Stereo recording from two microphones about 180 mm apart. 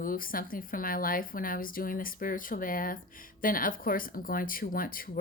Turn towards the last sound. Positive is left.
turn(degrees=50)  # may be behind; listen again after turning